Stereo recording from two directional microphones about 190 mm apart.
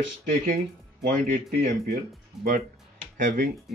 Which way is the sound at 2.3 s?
Centre (ahead or behind).